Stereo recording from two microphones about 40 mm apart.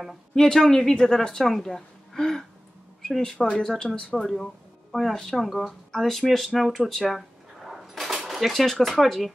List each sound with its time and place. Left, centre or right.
0.0 s a woman's voice: centre
7.6 s coin: centre
9.0 s speech: centre